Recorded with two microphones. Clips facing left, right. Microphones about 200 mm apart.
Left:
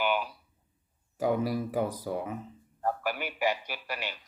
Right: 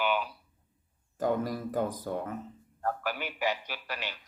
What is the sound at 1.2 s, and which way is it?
A man's voice, 10° left (ahead or behind).